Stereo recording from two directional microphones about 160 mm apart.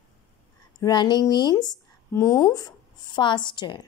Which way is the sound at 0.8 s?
25° left (ahead or behind).